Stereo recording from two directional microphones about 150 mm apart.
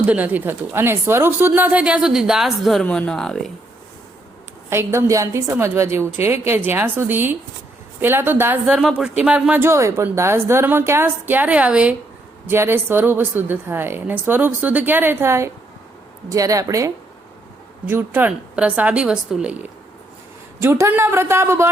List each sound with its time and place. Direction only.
0.0 s speech: 10° right (ahead or behind)
4.7 s speech: 15° right (ahead or behind)
20.6 s speech: 20° right (ahead or behind)